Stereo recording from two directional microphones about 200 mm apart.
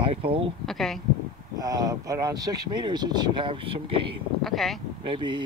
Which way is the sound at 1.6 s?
20° right (ahead or behind).